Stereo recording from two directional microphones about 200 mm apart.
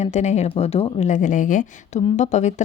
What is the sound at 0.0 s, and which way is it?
A woman's voice, 35° left (ahead or behind).